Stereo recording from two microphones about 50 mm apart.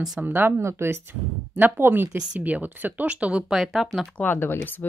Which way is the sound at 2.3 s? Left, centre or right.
Right.